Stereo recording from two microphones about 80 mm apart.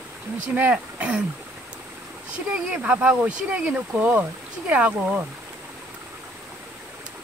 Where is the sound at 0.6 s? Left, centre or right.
Centre.